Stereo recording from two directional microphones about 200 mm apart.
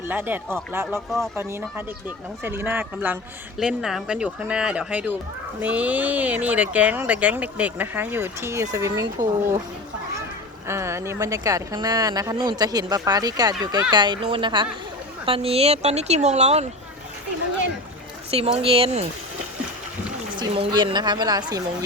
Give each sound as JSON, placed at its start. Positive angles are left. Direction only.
{"t": 0.0, "sound": "speech", "side_deg": -10}
{"t": 0.9, "sound": "speech", "side_deg": 0}
{"t": 1.4, "sound": "speech", "side_deg": -10}
{"t": 10.7, "sound": "speech", "side_deg": -15}
{"t": 18.3, "sound": "speech", "side_deg": -30}
{"t": 20.4, "sound": "speech", "side_deg": -25}